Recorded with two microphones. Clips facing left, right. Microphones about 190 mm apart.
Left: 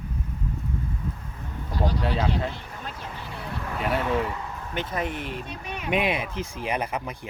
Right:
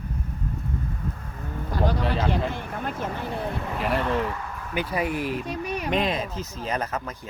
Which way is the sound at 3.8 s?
Centre (ahead or behind).